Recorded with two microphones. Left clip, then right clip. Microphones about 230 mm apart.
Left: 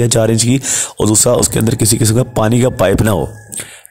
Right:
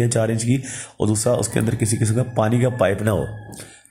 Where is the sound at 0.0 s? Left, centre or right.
Left.